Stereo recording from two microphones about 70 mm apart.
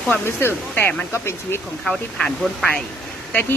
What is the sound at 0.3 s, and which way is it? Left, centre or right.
A man's voice, left.